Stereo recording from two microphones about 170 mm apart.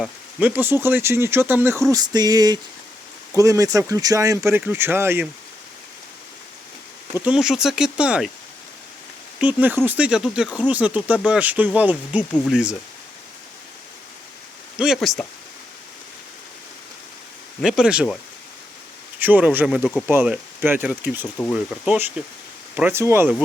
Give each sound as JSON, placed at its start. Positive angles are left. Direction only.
{"t": 0.0, "sound": "speech", "side_deg": -10}
{"t": 1.9, "sound": "speech", "side_deg": -25}
{"t": 7.1, "sound": "speech", "side_deg": -5}
{"t": 9.4, "sound": "speech", "side_deg": -10}
{"t": 14.8, "sound": "speech", "side_deg": 0}
{"t": 17.6, "sound": "speech", "side_deg": -5}
{"t": 19.2, "sound": "speech", "side_deg": -10}